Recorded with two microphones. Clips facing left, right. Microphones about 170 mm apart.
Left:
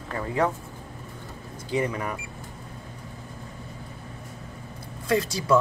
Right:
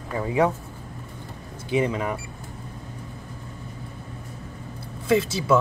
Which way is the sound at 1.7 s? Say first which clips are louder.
Right 3 dB; 20° right (ahead or behind).